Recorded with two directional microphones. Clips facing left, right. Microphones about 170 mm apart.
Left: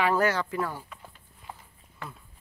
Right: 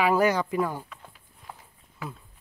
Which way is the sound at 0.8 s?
Centre (ahead or behind).